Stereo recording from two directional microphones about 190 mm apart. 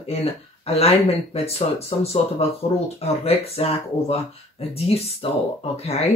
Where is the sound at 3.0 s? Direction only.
30° left (ahead or behind).